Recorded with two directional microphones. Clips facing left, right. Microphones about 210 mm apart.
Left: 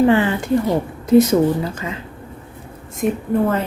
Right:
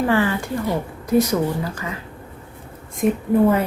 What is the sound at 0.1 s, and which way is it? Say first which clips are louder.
Speech: left 4 dB; 20° left (ahead or behind).